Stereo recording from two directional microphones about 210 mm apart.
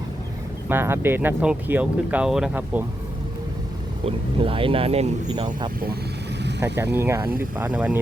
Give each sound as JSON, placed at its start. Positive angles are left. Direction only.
{"t": 0.7, "sound": "speech", "side_deg": -10}
{"t": 4.0, "sound": "speech", "side_deg": -25}
{"t": 6.9, "sound": "speech", "side_deg": -10}